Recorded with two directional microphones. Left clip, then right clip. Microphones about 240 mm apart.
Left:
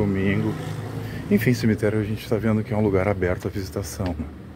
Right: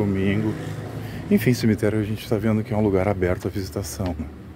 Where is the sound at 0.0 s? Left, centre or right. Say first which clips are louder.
Even; centre.